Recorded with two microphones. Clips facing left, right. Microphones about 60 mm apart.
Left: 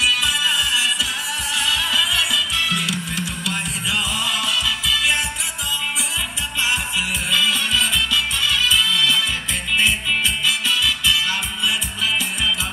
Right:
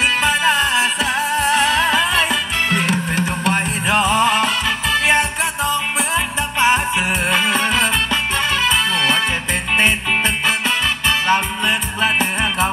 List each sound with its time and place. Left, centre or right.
0.0 s music: right